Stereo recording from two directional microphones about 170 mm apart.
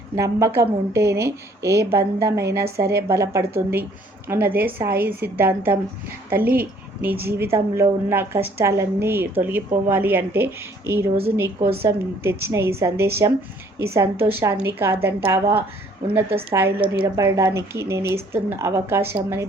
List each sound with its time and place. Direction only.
0.2 s a woman's voice: 15° right (ahead or behind)
2.6 s a woman's voice: 65° right (ahead or behind)
3.1 s a woman's voice: 15° right (ahead or behind)
7.0 s a woman's voice: 10° right (ahead or behind)